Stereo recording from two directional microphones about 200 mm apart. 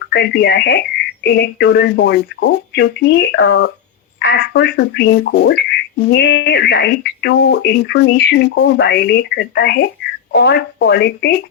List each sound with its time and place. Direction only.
0.1 s speech: 55° left (ahead or behind)